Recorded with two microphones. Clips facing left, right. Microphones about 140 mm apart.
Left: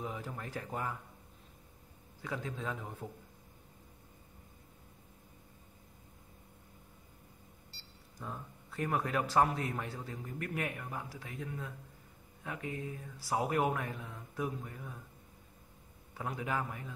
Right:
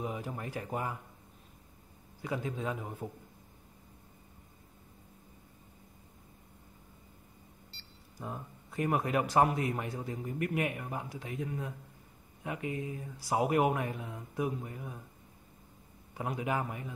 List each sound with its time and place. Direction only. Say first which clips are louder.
0.0 s a man's voice: right 4 dB; 15° right (ahead or behind)
2.2 s a man's voice: right 4 dB; 15° right (ahead or behind)
8.2 s a man's voice: right 3 dB; 15° right (ahead or behind)
16.2 s a man's voice: right 3 dB; 20° right (ahead or behind)